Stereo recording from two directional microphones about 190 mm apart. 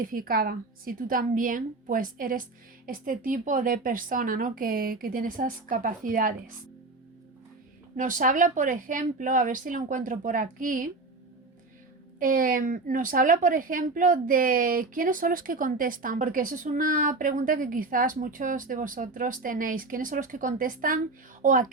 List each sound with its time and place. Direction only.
0.0 s a woman's voice: 45° right (ahead or behind)
7.9 s a woman's voice: 45° right (ahead or behind)
12.2 s a woman's voice: 45° right (ahead or behind)